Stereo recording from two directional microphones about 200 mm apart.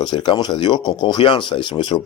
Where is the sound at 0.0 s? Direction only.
20° left (ahead or behind).